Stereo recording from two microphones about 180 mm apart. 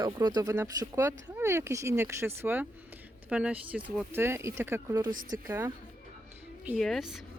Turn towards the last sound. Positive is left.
turn(degrees=0)  # may be behind; listen again after turning